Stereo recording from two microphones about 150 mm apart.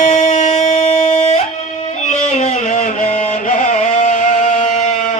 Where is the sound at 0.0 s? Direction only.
50° left (ahead or behind).